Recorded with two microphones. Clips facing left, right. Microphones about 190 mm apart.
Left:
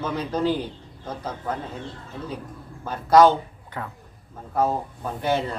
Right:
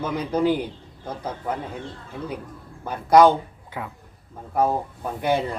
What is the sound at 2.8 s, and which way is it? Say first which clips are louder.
A man's voice: right 1 dB; 15° right (ahead or behind).